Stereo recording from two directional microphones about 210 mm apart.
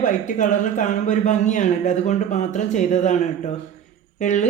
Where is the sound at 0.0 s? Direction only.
35° left (ahead or behind).